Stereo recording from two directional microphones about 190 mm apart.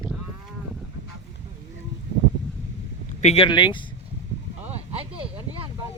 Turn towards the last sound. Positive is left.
turn(degrees=-30)  # may be behind; listen again after turning